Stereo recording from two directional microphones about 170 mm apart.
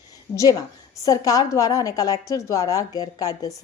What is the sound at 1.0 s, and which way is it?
A woman's voice, 20° left (ahead or behind).